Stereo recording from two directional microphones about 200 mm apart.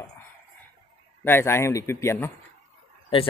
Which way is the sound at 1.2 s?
10° left (ahead or behind).